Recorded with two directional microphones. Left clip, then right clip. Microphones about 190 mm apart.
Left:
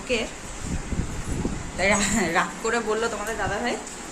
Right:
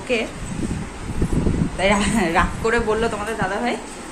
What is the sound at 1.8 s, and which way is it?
Speech, centre (ahead or behind).